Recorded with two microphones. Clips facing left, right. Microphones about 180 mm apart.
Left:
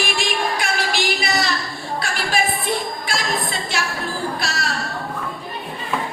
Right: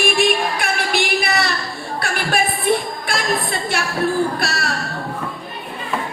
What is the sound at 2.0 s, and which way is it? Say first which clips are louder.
Speech: right 2 dB; 55° right (ahead or behind).